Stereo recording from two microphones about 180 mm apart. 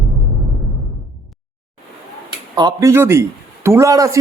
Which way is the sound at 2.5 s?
20° right (ahead or behind).